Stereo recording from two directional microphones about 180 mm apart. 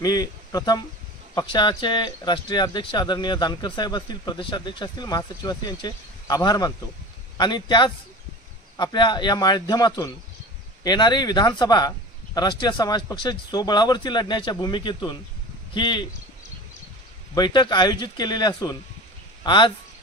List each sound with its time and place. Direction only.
0.0 s speech: 20° left (ahead or behind)
17.3 s speech: 25° left (ahead or behind)